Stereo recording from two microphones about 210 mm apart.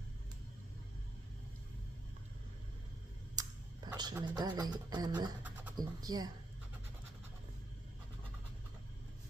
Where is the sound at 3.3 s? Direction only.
20° right (ahead or behind).